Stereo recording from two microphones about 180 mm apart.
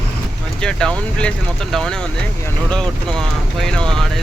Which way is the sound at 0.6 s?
5° left (ahead or behind).